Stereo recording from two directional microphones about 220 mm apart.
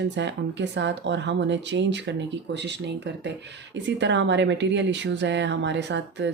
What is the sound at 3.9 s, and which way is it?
Speech, 55° right (ahead or behind).